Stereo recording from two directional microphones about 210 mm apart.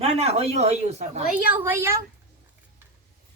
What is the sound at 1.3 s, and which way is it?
Speech, 10° right (ahead or behind).